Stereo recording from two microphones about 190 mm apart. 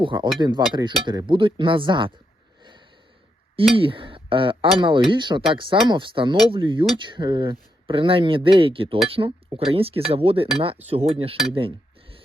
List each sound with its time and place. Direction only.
0.0 s speech: 25° right (ahead or behind)
3.8 s speech: 25° right (ahead or behind)
11.5 s cutlery: 30° right (ahead or behind)